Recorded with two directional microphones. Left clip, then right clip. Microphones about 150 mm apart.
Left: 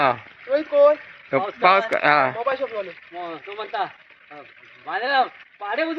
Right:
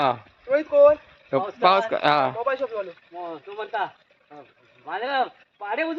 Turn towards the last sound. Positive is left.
turn(degrees=-5)  # may be behind; listen again after turning